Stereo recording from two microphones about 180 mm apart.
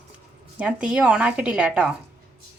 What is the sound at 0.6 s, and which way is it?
A woman's voice, 5° right (ahead or behind).